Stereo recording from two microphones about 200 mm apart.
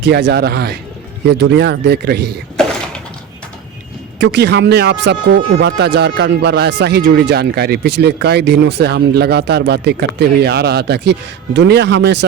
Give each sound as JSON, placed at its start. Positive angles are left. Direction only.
{"t": 0.0, "sound": "speech", "side_deg": -60}
{"t": 4.2, "sound": "speech", "side_deg": -55}